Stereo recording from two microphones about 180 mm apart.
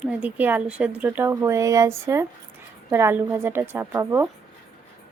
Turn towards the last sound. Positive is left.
turn(degrees=-15)  # may be behind; listen again after turning